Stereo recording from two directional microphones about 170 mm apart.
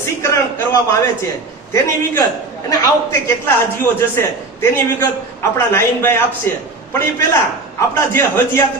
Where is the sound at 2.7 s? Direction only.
20° left (ahead or behind).